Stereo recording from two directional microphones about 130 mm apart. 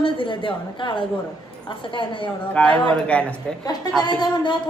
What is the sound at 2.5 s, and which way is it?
A man's voice, 10° left (ahead or behind).